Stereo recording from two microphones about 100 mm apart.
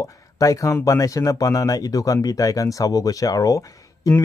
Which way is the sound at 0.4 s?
30° left (ahead or behind).